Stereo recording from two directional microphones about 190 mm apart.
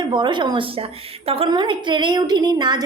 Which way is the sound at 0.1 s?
25° right (ahead or behind).